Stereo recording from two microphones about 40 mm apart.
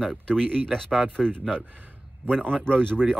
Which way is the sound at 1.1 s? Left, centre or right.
Left.